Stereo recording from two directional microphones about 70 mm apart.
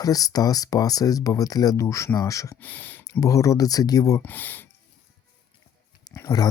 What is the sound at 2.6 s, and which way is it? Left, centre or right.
Speech, left.